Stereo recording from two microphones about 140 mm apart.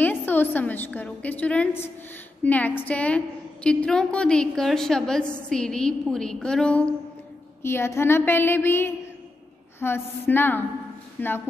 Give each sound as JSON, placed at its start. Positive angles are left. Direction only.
{"t": 0.0, "sound": "a woman's voice", "side_deg": 15}